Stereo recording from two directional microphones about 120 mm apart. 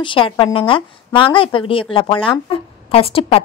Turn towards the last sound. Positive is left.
turn(degrees=50)  # may be behind; listen again after turning